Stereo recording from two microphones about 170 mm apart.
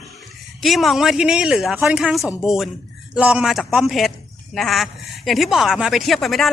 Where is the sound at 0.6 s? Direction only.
Centre (ahead or behind).